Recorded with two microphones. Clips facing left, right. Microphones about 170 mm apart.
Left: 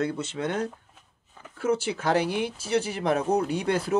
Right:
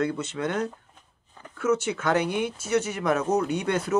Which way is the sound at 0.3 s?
30° left (ahead or behind).